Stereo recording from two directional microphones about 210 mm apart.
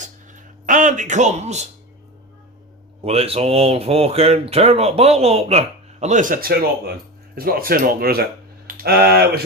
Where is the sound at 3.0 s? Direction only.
30° right (ahead or behind).